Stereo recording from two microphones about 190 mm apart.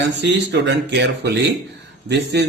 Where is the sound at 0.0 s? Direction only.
65° right (ahead or behind).